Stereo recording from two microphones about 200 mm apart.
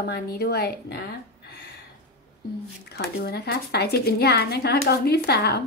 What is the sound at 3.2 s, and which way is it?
Speech, 55° left (ahead or behind).